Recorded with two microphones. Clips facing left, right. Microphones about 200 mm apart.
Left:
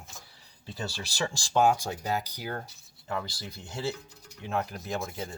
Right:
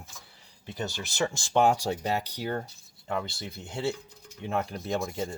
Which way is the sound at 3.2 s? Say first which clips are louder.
Right 3 dB; 25° right (ahead or behind).